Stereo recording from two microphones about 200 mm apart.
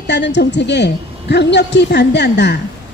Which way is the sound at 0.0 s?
60° left (ahead or behind).